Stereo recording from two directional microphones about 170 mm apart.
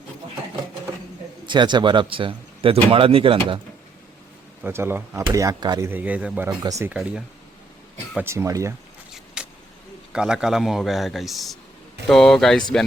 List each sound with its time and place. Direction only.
1.5 s speech: 25° right (ahead or behind)
4.6 s speech: 15° right (ahead or behind)
5.9 s speech: 10° right (ahead or behind)
6.6 s speech: 20° right (ahead or behind)
6.9 s speech: 5° right (ahead or behind)
9.1 s vehicle: 5° right (ahead or behind)
10.1 s a man's voice: 5° right (ahead or behind)